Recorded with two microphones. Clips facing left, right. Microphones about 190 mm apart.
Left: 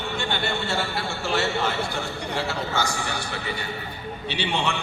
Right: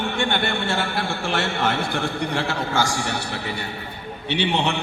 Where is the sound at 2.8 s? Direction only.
85° right.